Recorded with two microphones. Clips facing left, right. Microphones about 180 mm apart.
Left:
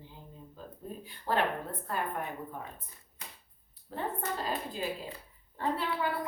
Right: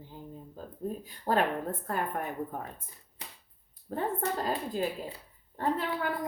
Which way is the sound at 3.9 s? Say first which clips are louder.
Right 4 dB; 45° right (ahead or behind).